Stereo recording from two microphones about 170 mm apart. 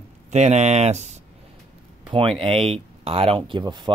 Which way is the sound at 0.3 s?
40° right (ahead or behind).